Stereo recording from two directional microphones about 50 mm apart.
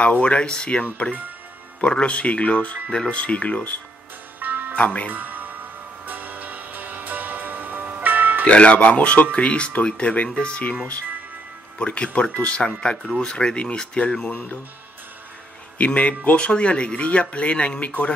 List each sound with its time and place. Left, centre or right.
0.0 s speech: left
4.4 s music: right
4.7 s speech: left
5.1 s music: right
8.5 s speech: left
11.8 s speech: left
15.8 s speech: left